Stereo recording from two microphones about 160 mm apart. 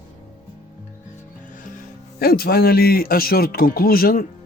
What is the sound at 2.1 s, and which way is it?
Speech, 70° left (ahead or behind).